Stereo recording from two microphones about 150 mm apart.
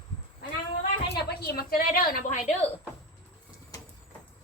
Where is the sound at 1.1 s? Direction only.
90° left.